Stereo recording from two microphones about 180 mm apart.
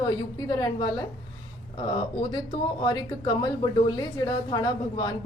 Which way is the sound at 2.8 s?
25° left (ahead or behind).